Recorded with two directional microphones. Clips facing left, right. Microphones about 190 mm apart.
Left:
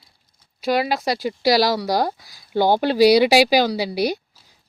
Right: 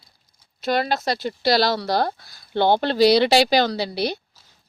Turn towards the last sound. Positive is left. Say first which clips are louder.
# left 3 dB
turn(degrees=10)  # may be behind; listen again after turning